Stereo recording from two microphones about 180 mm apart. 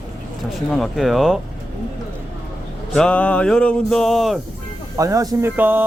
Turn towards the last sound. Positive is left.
turn(degrees=-10)  # may be behind; listen again after turning